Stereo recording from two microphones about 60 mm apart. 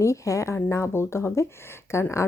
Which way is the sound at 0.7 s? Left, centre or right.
Left.